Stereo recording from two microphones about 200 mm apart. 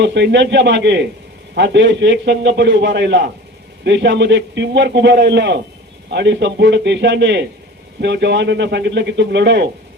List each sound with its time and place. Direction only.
0.0 s a man's voice: 60° right (ahead or behind)